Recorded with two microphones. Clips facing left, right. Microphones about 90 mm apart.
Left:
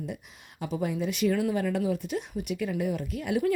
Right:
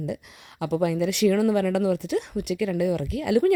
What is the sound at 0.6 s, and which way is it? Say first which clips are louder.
Speech: right 6 dB; 90° right.